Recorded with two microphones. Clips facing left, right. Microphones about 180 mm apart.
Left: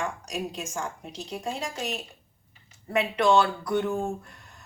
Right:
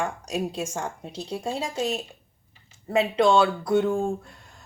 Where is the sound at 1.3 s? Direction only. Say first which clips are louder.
Right 3 dB; 30° right (ahead or behind).